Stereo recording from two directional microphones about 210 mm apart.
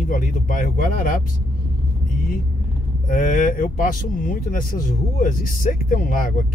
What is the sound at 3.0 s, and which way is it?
Speech, 40° left (ahead or behind).